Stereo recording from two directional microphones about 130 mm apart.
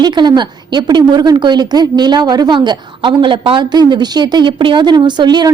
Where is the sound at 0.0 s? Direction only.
35° right (ahead or behind).